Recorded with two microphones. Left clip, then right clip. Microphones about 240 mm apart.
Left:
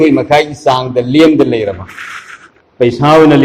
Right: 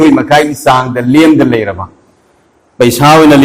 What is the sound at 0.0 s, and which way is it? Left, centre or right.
A man's voice, right.